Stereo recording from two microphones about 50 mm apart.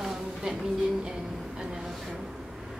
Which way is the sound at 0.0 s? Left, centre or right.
Centre.